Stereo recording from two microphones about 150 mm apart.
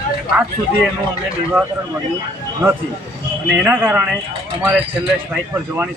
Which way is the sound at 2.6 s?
15° right (ahead or behind).